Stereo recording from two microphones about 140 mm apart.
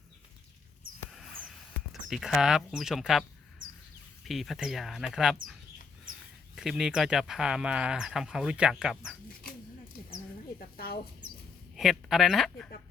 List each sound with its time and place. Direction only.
1.9 s speech: centre (ahead or behind)
4.3 s speech: centre (ahead or behind)
6.6 s speech: 5° right (ahead or behind)
10.6 s a sound: 90° left
11.8 s speech: centre (ahead or behind)